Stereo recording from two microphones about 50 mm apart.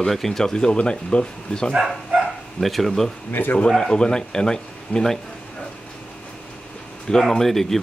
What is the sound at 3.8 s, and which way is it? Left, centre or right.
Speech, centre.